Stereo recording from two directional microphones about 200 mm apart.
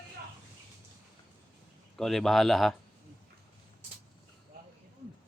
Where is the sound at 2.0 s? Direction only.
Centre (ahead or behind).